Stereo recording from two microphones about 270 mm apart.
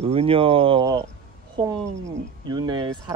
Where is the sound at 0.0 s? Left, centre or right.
Right.